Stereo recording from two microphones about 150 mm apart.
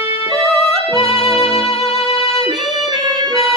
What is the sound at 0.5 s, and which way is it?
Music, centre (ahead or behind).